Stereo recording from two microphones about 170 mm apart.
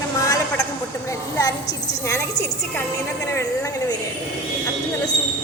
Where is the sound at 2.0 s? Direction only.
15° left (ahead or behind).